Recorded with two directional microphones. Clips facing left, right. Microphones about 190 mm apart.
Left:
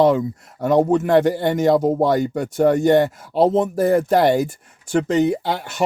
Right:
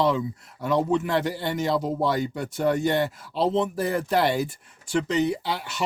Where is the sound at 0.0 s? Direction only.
50° left (ahead or behind).